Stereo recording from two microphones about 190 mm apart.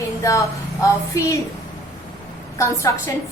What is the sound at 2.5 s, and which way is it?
Speech, 15° left (ahead or behind).